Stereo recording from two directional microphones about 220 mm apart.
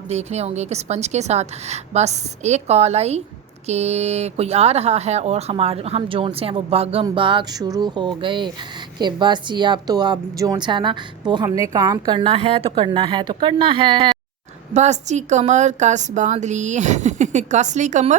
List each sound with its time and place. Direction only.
0.1 s a woman's voice: 30° right (ahead or behind)